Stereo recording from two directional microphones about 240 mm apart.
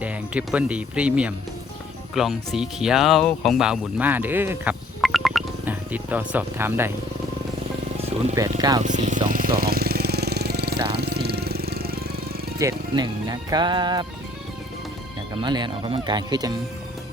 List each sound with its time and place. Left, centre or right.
0.0 s speech: centre
8.4 s speech: centre
8.8 s speech: right
9.6 s vehicle: right
12.5 s speech: centre
15.4 s speech: centre